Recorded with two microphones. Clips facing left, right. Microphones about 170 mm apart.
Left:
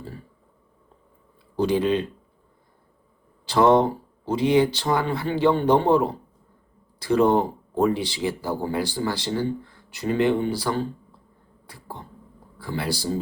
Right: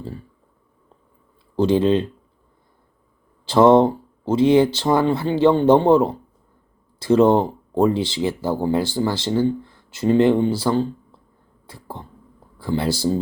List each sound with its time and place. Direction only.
1.5 s speech: 25° right (ahead or behind)
3.4 s speech: 25° right (ahead or behind)
11.6 s cough: 25° right (ahead or behind)
12.5 s speech: 25° right (ahead or behind)